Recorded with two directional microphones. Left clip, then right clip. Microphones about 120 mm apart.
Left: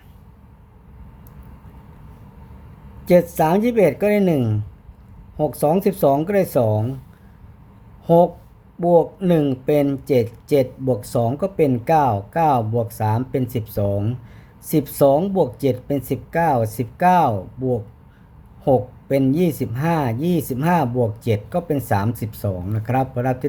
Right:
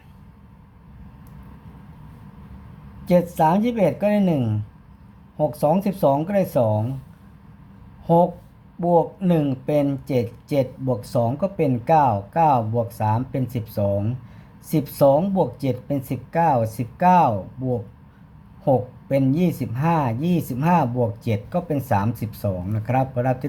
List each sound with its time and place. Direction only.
3.0 s speech: 40° left (ahead or behind)
8.0 s speech: 35° left (ahead or behind); by 23.5 s 20° left (ahead or behind)